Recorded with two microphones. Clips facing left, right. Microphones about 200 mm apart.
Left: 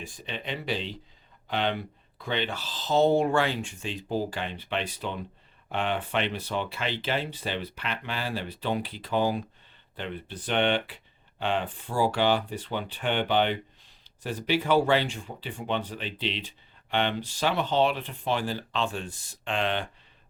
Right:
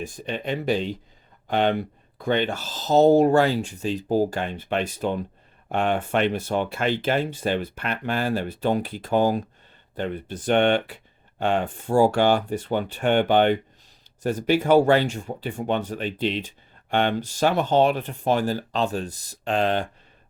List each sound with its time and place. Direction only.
0.0 s speech: 45° right (ahead or behind)